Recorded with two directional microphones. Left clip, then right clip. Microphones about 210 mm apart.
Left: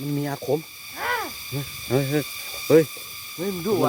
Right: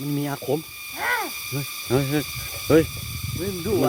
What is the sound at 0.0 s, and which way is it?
Ratchet, 5° right (ahead or behind).